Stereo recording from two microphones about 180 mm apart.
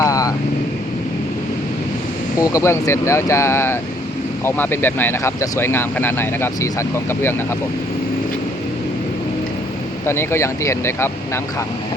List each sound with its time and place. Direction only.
0.0 s vehicle: 20° left (ahead or behind)
2.4 s speech: 15° left (ahead or behind)
10.1 s speech: 15° left (ahead or behind)